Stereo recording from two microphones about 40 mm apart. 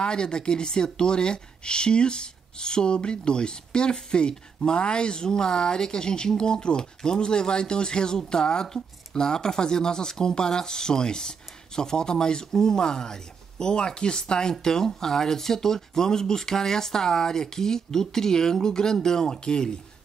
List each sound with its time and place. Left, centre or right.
0.0 s speech: left